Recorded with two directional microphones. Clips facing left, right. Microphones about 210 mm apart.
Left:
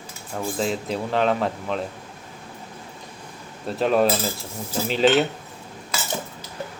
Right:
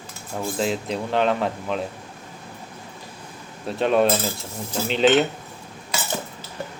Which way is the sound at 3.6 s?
Centre (ahead or behind).